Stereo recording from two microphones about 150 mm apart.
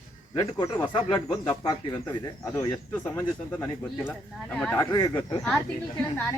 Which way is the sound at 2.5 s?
25° left (ahead or behind).